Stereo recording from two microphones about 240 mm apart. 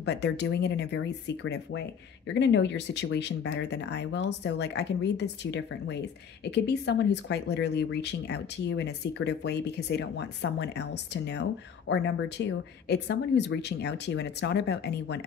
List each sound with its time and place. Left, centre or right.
0.0 s speech: left